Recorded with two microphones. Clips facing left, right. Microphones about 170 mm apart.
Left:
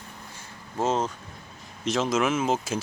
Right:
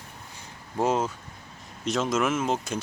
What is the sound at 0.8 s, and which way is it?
Speech, 10° right (ahead or behind).